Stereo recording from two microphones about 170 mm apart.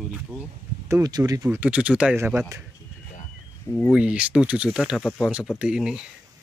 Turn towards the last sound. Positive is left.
turn(degrees=-5)  # may be behind; listen again after turning